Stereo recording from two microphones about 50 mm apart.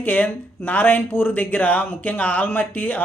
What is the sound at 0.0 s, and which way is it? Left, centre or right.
Speech, left.